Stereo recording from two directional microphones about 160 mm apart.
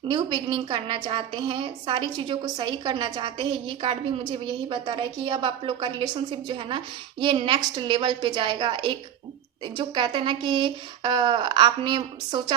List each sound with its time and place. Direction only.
0.1 s a woman's voice: 25° right (ahead or behind)